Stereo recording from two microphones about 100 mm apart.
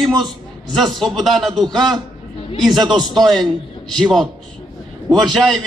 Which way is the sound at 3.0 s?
45° right (ahead or behind).